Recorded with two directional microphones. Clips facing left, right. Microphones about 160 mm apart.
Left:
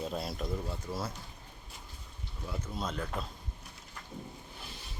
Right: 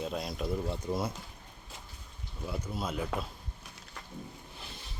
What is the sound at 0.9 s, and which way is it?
Speech, 20° right (ahead or behind).